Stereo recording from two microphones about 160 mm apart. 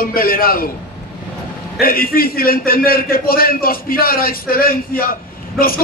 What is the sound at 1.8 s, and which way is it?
A man's voice, 70° left (ahead or behind).